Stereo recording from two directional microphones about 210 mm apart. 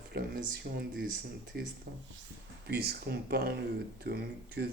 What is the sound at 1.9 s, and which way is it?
Speech, 40° right (ahead or behind).